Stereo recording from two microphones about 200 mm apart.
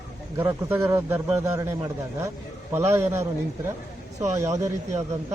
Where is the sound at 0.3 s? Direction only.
15° right (ahead or behind).